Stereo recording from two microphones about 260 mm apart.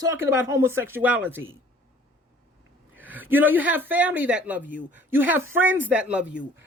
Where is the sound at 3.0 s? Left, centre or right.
Centre.